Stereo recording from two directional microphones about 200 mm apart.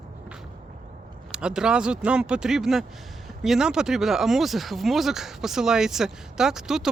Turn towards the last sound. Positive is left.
turn(degrees=0)  # may be behind; listen again after turning